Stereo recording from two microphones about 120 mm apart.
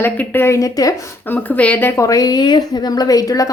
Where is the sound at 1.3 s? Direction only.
10° left (ahead or behind).